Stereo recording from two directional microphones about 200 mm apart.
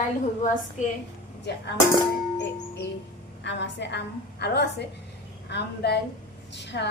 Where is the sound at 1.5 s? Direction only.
55° left (ahead or behind).